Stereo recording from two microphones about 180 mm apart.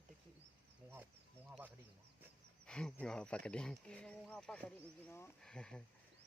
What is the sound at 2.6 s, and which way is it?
Speech, 5° left (ahead or behind).